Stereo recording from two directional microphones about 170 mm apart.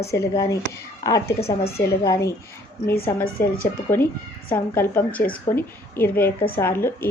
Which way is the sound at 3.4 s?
15° left (ahead or behind).